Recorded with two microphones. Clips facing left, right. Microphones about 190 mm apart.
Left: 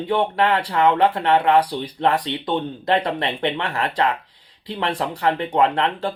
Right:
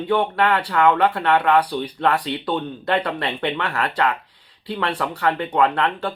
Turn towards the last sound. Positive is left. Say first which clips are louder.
# even
turn(degrees=30)  # may be behind; listen again after turning